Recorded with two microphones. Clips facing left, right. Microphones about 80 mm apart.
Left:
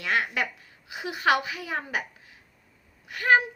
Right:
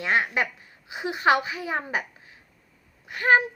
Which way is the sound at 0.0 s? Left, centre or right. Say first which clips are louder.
Right 3 dB; right.